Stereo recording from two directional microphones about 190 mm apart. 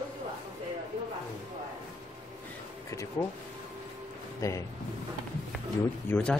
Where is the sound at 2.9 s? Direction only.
15° left (ahead or behind).